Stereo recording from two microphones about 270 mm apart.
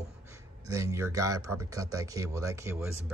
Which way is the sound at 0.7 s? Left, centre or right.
Centre.